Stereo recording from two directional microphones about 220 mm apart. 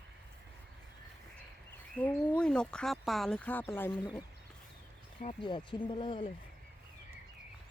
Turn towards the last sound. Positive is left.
turn(degrees=20)  # may be behind; listen again after turning